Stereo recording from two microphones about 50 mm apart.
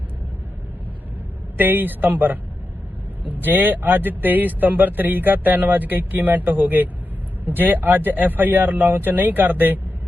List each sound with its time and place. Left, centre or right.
1.5 s speech: right